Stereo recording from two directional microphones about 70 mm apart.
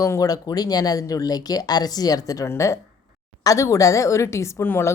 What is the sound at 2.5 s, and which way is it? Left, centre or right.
A woman's voice, left.